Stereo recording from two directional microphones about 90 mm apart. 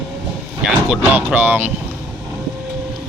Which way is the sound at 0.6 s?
15° right (ahead or behind).